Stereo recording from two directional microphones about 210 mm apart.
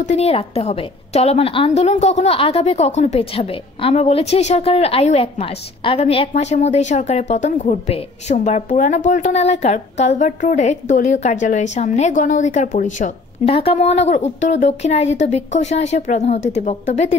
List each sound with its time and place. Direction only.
0.0 s a woman's voice: 30° left (ahead or behind)